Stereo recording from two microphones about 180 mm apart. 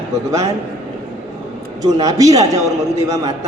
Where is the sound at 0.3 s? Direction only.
20° right (ahead or behind).